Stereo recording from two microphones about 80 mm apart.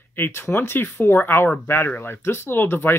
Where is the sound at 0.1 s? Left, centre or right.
Left.